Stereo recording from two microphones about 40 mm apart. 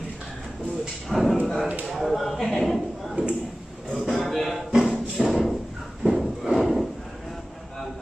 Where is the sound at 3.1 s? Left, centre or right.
Right.